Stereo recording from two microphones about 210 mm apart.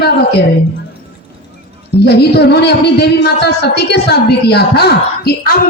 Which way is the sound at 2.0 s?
50° left (ahead or behind).